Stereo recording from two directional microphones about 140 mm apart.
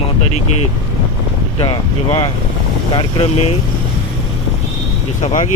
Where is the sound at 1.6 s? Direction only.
45° left (ahead or behind).